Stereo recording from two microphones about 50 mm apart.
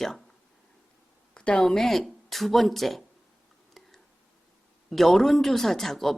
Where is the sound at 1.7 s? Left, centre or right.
Centre.